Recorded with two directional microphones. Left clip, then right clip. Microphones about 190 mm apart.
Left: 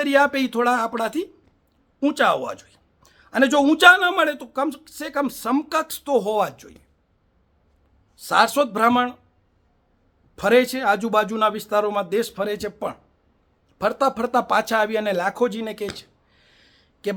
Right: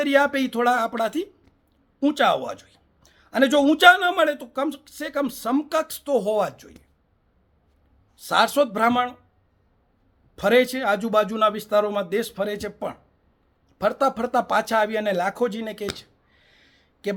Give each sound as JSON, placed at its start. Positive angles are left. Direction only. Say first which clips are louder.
{"t": 0.0, "sound": "speech", "louder": "left 1 dB", "side_deg": 10}
{"t": 8.1, "sound": "speech", "louder": "left 2 dB", "side_deg": 10}
{"t": 10.3, "sound": "speech", "louder": "left 1 dB", "side_deg": 10}
{"t": 16.0, "sound": "a sound", "louder": "left 2 dB", "side_deg": 10}